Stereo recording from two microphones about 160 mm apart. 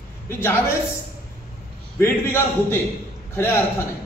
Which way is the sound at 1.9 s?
15° left (ahead or behind).